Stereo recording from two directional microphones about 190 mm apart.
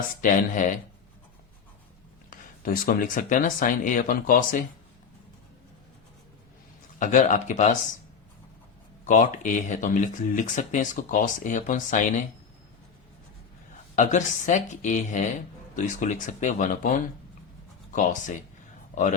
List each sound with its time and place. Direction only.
0.2 s speech: 45° left (ahead or behind)
2.3 s speech: 45° left (ahead or behind)
7.0 s speech: 40° left (ahead or behind)
9.0 s speech: 40° left (ahead or behind)
13.9 s speech: 40° left (ahead or behind)